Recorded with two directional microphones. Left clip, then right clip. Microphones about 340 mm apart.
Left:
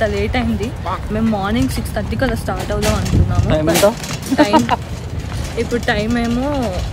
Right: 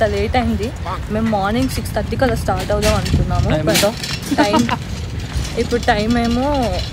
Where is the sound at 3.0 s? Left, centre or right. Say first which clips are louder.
Even; left.